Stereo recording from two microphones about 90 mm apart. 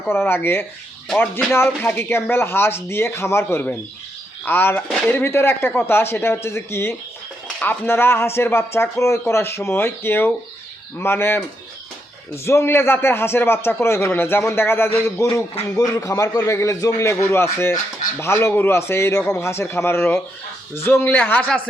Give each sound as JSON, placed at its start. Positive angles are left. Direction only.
{"t": 0.1, "sound": "a man's voice", "side_deg": 25}